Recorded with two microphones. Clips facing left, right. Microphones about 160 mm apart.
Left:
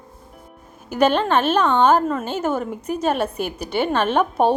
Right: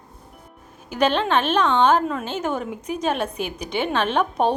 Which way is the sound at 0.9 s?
10° left (ahead or behind).